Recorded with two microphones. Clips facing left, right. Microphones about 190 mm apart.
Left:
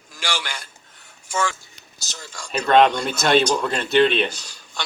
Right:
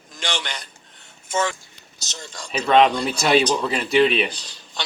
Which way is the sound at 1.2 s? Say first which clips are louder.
Right 1 dB; 20° right (ahead or behind).